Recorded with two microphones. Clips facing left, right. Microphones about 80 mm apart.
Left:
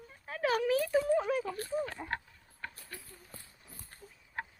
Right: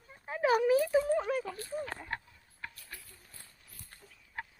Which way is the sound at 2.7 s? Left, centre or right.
Left.